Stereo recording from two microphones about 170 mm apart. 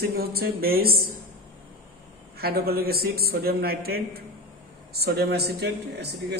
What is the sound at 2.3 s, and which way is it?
A man's voice, 65° right (ahead or behind).